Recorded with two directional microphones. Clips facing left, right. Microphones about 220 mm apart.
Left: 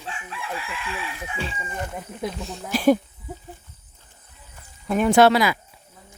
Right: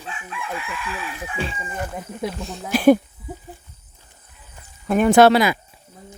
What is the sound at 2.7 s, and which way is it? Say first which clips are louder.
Speech: right 4 dB; 60° right (ahead or behind).